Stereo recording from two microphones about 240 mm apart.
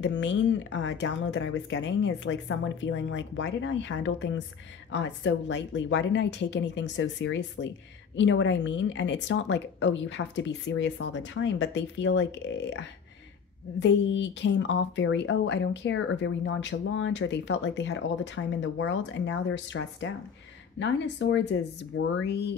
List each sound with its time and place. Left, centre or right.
0.0 s a woman's voice: left
13.7 s a woman's voice: left